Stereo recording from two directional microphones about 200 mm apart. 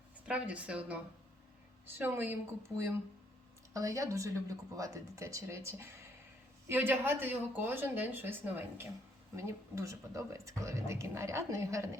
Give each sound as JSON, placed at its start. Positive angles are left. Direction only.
{"t": 0.3, "sound": "speech", "side_deg": -5}
{"t": 2.0, "sound": "speech", "side_deg": -10}
{"t": 3.7, "sound": "speech", "side_deg": -15}